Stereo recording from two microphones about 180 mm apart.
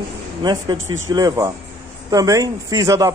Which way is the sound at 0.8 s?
90° right.